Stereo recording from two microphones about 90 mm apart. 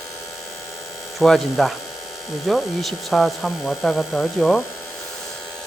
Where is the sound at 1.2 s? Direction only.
Centre (ahead or behind).